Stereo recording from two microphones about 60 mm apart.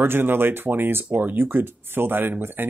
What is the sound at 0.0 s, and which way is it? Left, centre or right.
Speech, right.